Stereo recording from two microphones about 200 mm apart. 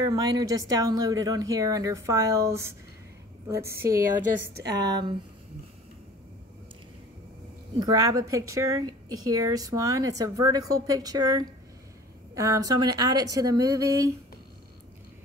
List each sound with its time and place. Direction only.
0.0 s a woman's voice: 20° right (ahead or behind)
3.7 s a woman's voice: 10° right (ahead or behind)
7.8 s a woman's voice: 20° right (ahead or behind)